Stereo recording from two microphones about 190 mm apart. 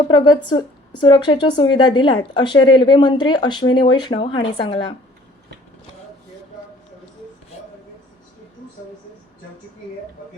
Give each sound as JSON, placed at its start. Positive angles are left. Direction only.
{"t": 0.1, "sound": "speech", "side_deg": 25}